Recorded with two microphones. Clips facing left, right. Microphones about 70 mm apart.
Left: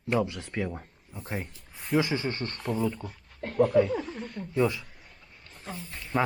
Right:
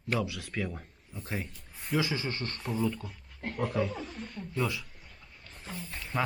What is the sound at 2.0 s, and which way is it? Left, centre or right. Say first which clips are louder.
Speech: left 4 dB; left.